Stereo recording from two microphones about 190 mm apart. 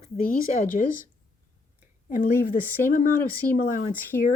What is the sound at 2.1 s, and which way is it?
Speech, 45° left (ahead or behind).